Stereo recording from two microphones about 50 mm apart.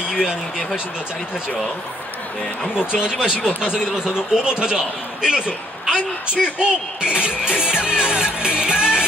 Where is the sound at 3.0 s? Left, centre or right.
Centre.